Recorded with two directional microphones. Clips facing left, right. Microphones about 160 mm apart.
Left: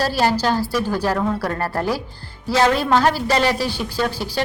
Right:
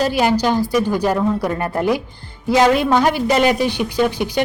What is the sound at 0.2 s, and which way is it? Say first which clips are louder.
A woman's voice: right 1 dB; 15° right (ahead or behind).